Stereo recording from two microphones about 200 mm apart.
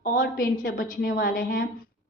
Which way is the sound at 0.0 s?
45° left (ahead or behind).